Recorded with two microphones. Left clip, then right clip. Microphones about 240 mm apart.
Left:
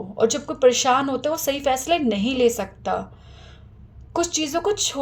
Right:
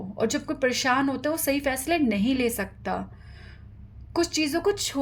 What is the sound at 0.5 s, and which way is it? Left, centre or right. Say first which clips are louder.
Speech: left 11 dB; right.